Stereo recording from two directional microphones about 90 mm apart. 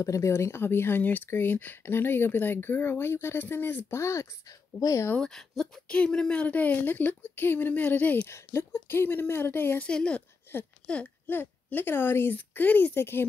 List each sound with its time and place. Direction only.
0.0 s speech: 35° left (ahead or behind)
4.7 s speech: 45° left (ahead or behind)
5.1 s speech: 5° left (ahead or behind); by 9.8 s 25° left (ahead or behind)
9.8 s speech: 10° left (ahead or behind)